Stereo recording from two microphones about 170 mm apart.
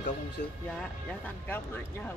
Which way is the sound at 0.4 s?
50° left (ahead or behind).